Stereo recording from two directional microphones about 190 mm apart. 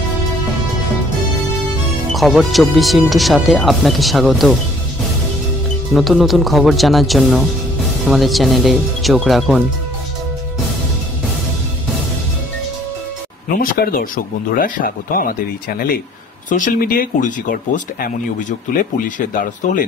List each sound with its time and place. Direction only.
2.1 s speech: centre (ahead or behind)
5.9 s speech: centre (ahead or behind)
13.6 s speech: 50° left (ahead or behind)